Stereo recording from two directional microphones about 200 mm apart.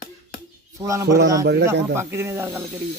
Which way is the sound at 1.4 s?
60° right (ahead or behind).